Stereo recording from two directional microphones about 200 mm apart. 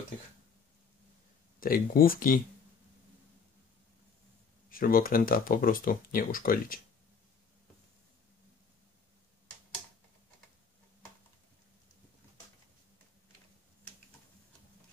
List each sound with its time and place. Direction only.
1.6 s speech: 45° left (ahead or behind)
4.6 s speech: 45° left (ahead or behind)